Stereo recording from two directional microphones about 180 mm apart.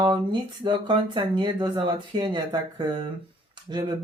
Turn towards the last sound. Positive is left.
turn(degrees=-25)  # may be behind; listen again after turning